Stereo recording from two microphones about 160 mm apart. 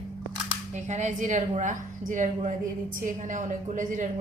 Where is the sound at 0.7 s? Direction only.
50° right (ahead or behind).